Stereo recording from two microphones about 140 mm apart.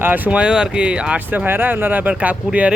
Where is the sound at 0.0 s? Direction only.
15° right (ahead or behind).